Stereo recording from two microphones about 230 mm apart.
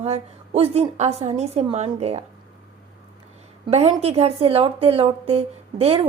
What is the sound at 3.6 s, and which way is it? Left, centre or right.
A woman's voice, right.